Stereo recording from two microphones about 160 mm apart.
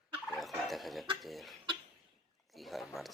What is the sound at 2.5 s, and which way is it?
Speech, centre (ahead or behind).